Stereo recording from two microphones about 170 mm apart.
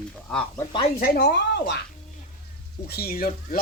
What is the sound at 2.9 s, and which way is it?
Speech, 65° left (ahead or behind).